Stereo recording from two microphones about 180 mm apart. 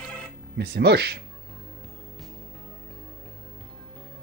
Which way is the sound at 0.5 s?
65° right (ahead or behind).